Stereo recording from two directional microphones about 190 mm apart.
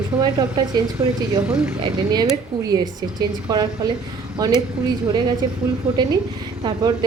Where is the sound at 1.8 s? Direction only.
25° right (ahead or behind).